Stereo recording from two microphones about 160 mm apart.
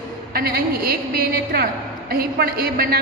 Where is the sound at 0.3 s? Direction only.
70° right (ahead or behind).